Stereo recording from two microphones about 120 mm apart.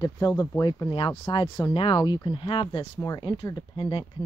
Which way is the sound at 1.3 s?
40° left (ahead or behind).